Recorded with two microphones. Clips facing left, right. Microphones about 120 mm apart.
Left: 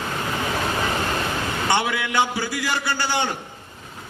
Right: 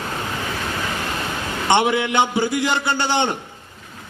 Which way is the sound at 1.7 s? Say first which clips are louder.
Right 7 dB; 25° right (ahead or behind).